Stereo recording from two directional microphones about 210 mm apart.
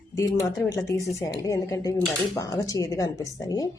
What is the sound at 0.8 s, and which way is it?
A woman's voice, 15° left (ahead or behind).